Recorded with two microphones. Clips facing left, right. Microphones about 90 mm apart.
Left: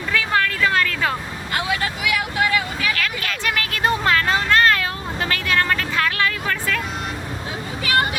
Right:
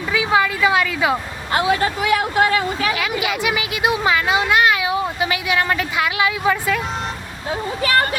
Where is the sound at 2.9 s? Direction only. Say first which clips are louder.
Right 4 dB; 10° right (ahead or behind).